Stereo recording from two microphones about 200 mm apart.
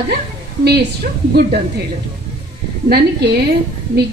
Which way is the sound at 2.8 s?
55° right (ahead or behind).